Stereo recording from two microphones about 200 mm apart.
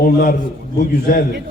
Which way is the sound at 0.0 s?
50° left (ahead or behind).